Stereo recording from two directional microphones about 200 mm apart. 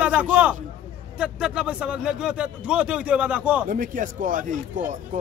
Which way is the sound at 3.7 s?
40° right (ahead or behind).